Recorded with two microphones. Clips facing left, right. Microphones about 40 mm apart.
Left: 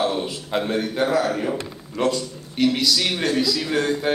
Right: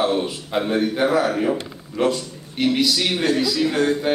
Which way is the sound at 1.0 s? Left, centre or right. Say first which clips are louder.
Even; centre.